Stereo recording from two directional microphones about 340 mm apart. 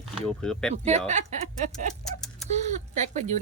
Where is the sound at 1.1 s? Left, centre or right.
Centre.